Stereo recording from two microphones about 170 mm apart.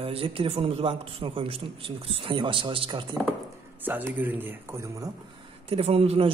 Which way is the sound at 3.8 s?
10° right (ahead or behind).